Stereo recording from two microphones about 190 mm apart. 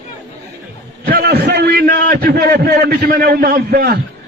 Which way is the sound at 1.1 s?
55° right (ahead or behind).